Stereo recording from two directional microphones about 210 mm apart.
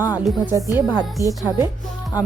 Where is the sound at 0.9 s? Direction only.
20° left (ahead or behind).